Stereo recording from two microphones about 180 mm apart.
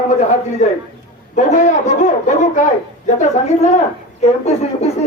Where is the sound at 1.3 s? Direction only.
45° left (ahead or behind).